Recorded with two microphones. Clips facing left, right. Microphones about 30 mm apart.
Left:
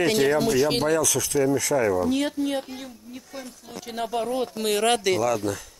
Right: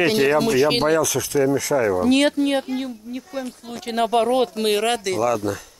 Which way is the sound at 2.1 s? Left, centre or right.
Right.